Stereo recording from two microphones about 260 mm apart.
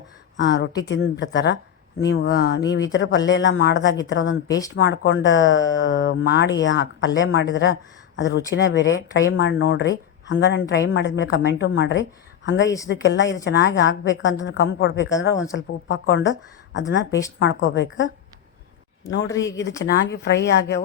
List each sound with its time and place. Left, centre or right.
0.3 s a woman's voice: left
4.4 s speech: centre
4.7 s a woman's voice: left
19.3 s speech: centre
19.8 s speech: left